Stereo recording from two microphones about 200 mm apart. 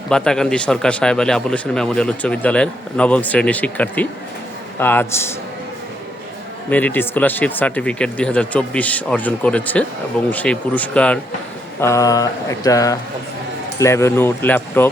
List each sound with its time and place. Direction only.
0.1 s speech: 5° left (ahead or behind)
6.7 s speech: 10° left (ahead or behind)